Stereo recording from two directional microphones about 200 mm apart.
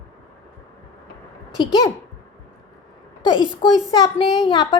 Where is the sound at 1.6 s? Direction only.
20° left (ahead or behind).